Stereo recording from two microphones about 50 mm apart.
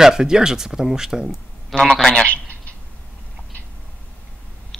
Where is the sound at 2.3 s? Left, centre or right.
Left.